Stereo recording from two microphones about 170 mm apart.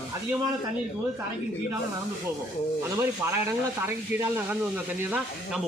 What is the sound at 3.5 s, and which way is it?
Speech, 15° right (ahead or behind).